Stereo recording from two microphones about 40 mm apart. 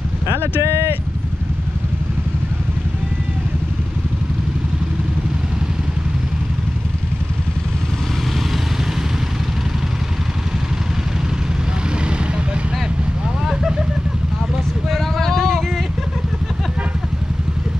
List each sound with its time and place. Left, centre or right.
0.3 s vehicle: right
13.5 s vehicle: centre
14.9 s a sound: centre